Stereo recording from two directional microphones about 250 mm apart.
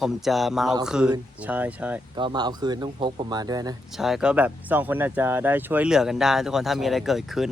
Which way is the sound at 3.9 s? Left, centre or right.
Centre.